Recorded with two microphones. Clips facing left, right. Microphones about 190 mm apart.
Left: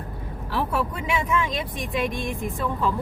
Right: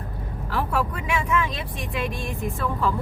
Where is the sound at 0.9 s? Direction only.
20° left (ahead or behind).